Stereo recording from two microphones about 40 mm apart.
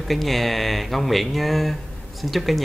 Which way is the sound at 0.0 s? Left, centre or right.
Centre.